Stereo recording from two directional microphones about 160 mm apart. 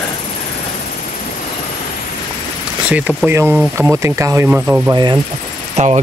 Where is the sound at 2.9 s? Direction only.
10° right (ahead or behind).